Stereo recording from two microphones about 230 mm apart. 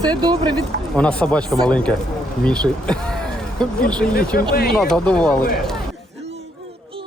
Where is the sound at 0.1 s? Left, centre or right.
Centre.